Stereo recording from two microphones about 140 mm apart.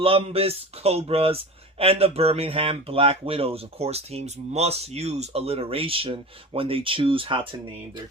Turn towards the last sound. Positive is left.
turn(degrees=-40)  # may be behind; listen again after turning